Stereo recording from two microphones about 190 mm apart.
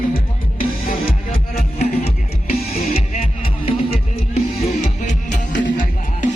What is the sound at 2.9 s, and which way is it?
Music, 35° left (ahead or behind).